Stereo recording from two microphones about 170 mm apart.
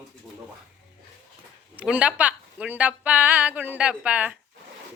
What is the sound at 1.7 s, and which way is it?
A woman's voice, 5° right (ahead or behind).